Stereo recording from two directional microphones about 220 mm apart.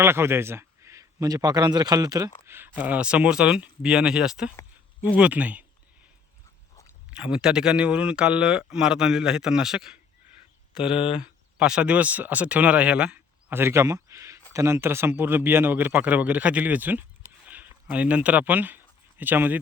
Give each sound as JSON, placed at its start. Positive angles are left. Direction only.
{"t": 0.0, "sound": "a man's voice", "side_deg": -10}
{"t": 7.2, "sound": "speech", "side_deg": -5}
{"t": 17.4, "sound": "a sound", "side_deg": -10}